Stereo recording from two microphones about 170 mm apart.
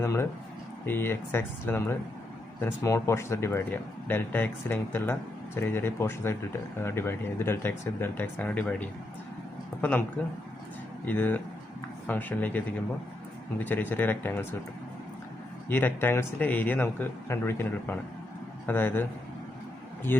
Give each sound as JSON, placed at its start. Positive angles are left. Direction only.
{"t": 0.0, "sound": "speech", "side_deg": 15}
{"t": 11.0, "sound": "speech", "side_deg": 10}
{"t": 15.7, "sound": "speech", "side_deg": 10}